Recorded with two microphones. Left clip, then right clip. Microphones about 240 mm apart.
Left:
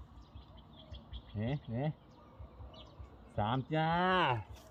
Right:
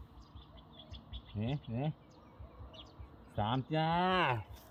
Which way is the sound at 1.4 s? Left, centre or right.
Centre.